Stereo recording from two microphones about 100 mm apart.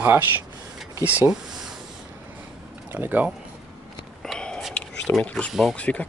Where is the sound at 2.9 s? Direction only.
15° right (ahead or behind).